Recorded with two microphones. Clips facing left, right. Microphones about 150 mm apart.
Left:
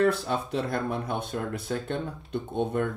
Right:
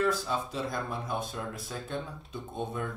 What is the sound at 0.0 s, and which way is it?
Speech, 60° left (ahead or behind).